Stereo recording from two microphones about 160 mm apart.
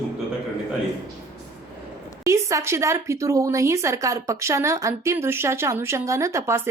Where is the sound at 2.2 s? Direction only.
20° right (ahead or behind).